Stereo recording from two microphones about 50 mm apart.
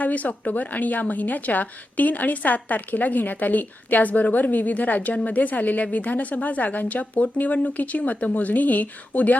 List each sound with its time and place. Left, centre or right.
0.0 s a woman's voice: left